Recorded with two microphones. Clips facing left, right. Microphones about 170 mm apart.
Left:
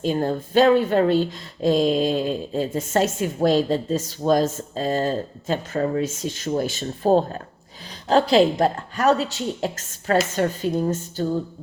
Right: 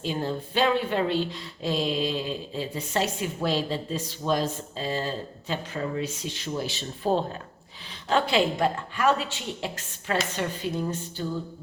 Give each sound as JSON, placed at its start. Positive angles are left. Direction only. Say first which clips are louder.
{"t": 0.0, "sound": "speech", "louder": "left 7 dB", "side_deg": 45}